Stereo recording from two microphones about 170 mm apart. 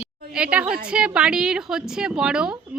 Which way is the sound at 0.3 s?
5° right (ahead or behind).